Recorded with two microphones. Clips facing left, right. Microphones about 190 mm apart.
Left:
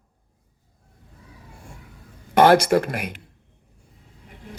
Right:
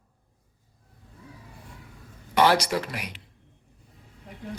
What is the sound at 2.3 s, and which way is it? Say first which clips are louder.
Speech: left 7 dB; 50° left (ahead or behind).